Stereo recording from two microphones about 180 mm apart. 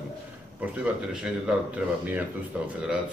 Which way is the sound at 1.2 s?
5° right (ahead or behind).